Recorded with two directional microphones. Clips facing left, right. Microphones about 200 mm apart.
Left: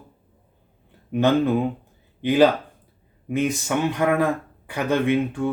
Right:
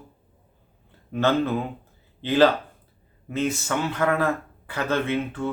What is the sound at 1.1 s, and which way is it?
Speech, 15° left (ahead or behind).